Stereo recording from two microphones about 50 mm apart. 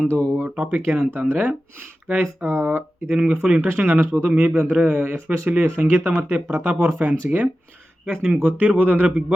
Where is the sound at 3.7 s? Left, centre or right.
Right.